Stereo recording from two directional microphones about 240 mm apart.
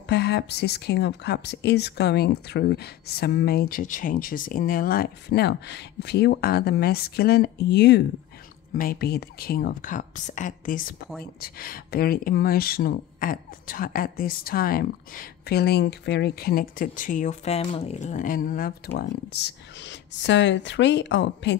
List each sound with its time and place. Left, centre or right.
0.1 s speech: left